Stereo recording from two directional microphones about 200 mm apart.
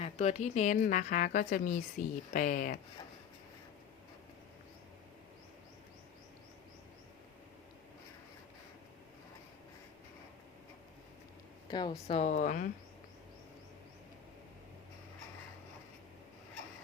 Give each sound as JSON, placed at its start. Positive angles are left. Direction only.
{"t": 0.0, "sound": "a woman's voice", "side_deg": 35}
{"t": 11.7, "sound": "a woman's voice", "side_deg": 20}